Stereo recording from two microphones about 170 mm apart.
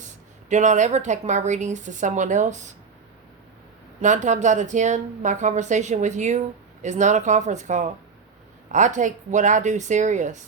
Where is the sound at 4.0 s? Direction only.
45° right (ahead or behind).